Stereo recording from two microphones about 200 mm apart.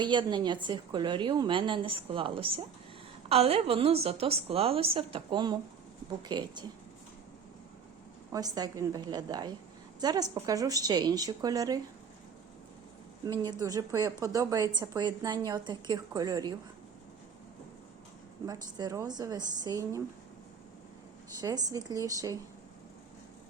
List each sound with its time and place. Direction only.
0.0 s a woman's voice: 20° right (ahead or behind)
8.3 s a woman's voice: 20° right (ahead or behind)
13.2 s a woman's voice: 20° right (ahead or behind)
18.4 s a woman's voice: 20° right (ahead or behind)
21.4 s a woman's voice: 20° right (ahead or behind)